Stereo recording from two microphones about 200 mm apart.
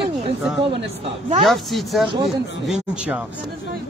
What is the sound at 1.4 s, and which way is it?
Speech, centre (ahead or behind).